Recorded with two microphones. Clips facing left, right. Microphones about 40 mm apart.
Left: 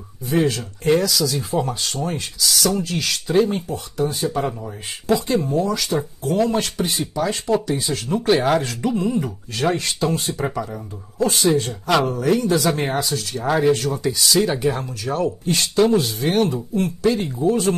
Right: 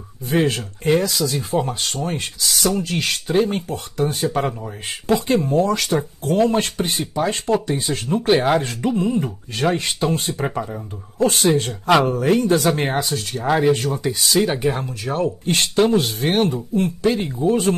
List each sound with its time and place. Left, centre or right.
0.3 s speech: right
3.5 s speech: right
6.3 s speech: right
11.2 s speech: right
13.4 s speech: centre
13.7 s speech: right
14.4 s speech: right
15.4 s speech: right
16.7 s speech: right
17.5 s speech: right